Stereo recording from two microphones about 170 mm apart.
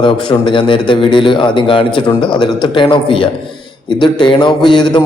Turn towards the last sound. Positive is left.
turn(degrees=25)  # may be behind; listen again after turning